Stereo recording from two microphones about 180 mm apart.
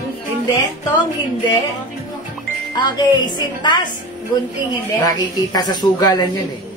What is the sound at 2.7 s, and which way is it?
A woman's voice, 25° left (ahead or behind).